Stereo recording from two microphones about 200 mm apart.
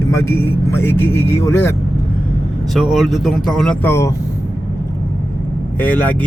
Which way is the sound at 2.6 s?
Centre (ahead or behind).